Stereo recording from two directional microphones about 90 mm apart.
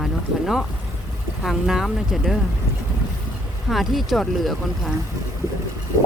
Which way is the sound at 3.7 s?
Centre (ahead or behind).